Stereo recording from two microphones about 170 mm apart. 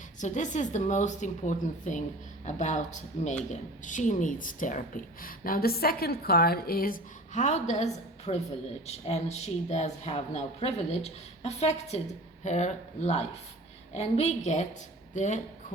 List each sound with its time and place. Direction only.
0.2 s a woman's voice: 45° left (ahead or behind)